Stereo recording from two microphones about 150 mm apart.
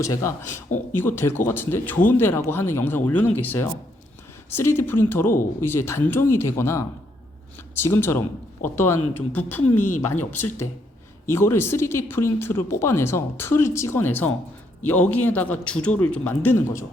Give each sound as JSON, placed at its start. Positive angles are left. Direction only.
{"t": 0.0, "sound": "a man's voice", "side_deg": 20}